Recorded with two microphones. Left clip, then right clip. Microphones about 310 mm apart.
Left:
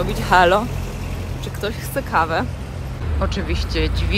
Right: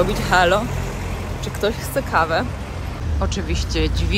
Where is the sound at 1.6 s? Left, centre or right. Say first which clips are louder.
Right 4 dB; centre.